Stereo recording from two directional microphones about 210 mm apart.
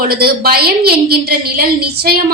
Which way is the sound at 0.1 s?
45° right (ahead or behind).